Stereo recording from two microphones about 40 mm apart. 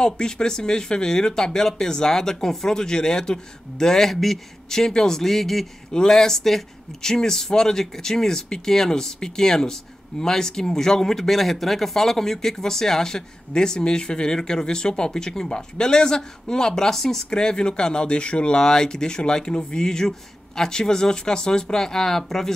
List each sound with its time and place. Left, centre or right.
0.0 s speech: centre
17.3 s speech: centre